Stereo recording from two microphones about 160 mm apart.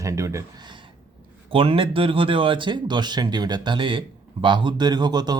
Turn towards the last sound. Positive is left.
turn(degrees=-25)  # may be behind; listen again after turning